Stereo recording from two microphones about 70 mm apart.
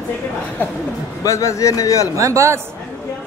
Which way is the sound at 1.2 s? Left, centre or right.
Left.